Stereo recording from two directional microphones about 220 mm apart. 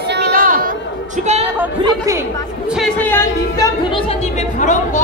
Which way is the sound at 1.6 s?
10° right (ahead or behind).